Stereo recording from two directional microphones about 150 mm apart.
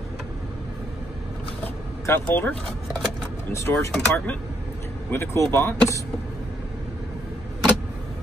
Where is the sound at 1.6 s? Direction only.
10° left (ahead or behind).